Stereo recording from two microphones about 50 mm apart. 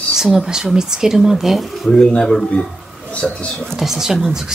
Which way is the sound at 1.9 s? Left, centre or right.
Centre.